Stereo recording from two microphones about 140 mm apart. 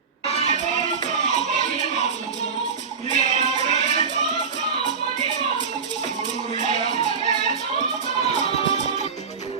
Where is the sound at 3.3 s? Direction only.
50° left (ahead or behind).